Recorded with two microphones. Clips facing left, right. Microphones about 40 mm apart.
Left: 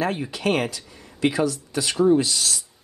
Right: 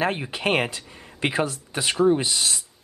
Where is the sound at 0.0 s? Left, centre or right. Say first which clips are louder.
Even; right.